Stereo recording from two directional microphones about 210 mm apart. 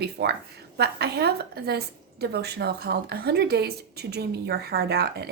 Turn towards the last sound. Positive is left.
turn(degrees=-50)  # may be behind; listen again after turning